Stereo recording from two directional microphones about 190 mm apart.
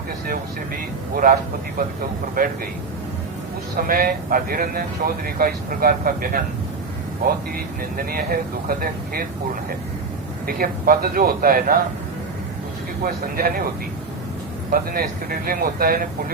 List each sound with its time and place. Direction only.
1.1 s speech: 45° right (ahead or behind)
2.4 s speech: 50° right (ahead or behind)
3.8 s speech: 50° right (ahead or behind)
7.5 s speech: 50° right (ahead or behind)
10.4 s speech: 50° right (ahead or behind)
13.1 s speech: 50° right (ahead or behind)
14.7 s speech: 50° right (ahead or behind)